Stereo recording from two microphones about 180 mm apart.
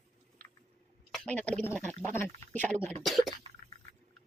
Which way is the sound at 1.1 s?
5° left (ahead or behind).